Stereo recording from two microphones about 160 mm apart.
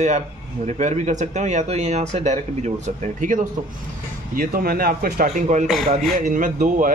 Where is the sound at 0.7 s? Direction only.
45° right (ahead or behind).